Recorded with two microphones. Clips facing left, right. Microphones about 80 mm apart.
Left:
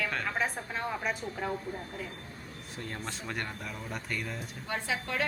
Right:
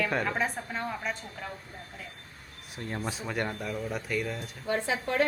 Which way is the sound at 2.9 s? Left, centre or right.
Centre.